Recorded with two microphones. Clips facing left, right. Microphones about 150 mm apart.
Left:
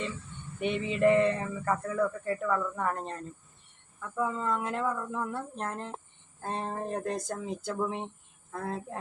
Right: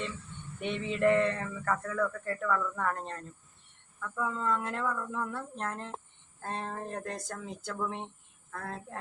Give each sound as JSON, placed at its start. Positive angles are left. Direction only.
{"t": 0.6, "sound": "a woman's voice", "side_deg": 15}